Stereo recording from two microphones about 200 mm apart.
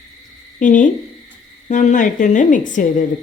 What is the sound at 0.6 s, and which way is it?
A woman's voice, 40° left (ahead or behind).